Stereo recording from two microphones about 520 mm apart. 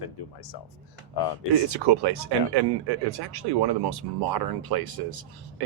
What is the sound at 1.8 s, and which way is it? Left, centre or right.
Speech, right.